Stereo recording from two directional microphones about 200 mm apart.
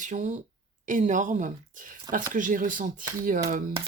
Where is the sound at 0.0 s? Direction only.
35° right (ahead or behind).